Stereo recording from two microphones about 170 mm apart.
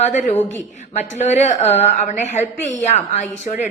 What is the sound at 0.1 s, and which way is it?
A woman's voice, 50° left (ahead or behind).